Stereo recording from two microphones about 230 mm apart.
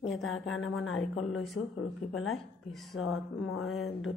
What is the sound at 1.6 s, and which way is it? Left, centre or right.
Speech, left.